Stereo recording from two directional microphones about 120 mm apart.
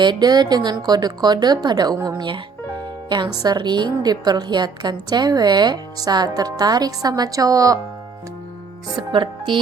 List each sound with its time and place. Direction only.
0.0 s a woman's voice: 35° right (ahead or behind)
3.4 s a woman's voice: 35° right (ahead or behind)
9.0 s a woman's voice: 40° right (ahead or behind)